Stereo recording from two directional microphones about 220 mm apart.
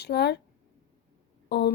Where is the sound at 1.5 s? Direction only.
50° left (ahead or behind).